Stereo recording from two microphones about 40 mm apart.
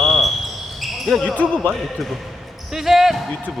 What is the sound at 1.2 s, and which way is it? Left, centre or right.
Speech, left.